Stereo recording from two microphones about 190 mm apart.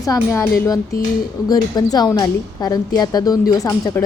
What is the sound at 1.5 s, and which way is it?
A woman's voice, 20° left (ahead or behind).